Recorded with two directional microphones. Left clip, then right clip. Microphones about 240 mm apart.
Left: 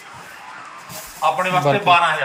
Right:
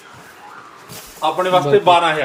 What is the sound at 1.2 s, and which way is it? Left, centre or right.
Speech, right.